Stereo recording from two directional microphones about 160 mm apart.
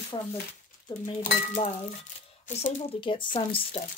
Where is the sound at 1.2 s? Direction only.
55° left (ahead or behind).